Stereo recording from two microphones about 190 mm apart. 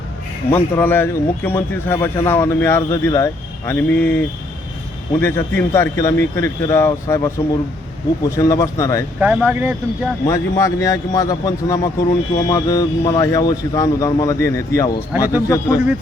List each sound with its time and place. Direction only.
0.5 s a man's voice: 10° left (ahead or behind)
5.2 s a man's voice: 10° left (ahead or behind)
9.2 s speech: 5° right (ahead or behind)
10.2 s a man's voice: 15° left (ahead or behind)